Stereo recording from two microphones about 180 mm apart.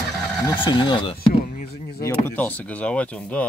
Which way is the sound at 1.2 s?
55° left (ahead or behind).